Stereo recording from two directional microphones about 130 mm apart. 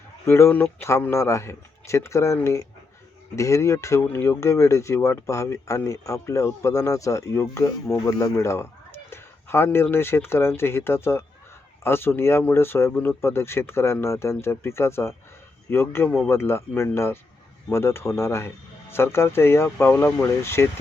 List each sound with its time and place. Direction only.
0.3 s speech: 20° left (ahead or behind)